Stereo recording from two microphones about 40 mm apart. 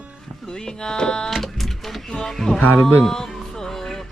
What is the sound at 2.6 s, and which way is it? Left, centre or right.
Speech, left.